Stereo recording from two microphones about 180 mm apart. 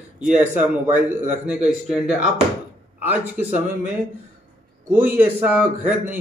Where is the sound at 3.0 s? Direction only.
10° right (ahead or behind).